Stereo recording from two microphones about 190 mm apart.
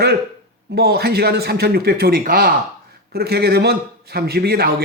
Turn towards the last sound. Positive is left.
turn(degrees=-55)  # may be behind; listen again after turning